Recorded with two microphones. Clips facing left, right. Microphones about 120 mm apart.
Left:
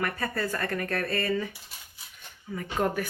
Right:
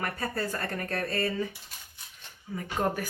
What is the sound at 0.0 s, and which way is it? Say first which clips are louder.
Speech: left 2 dB; 30° right (ahead or behind).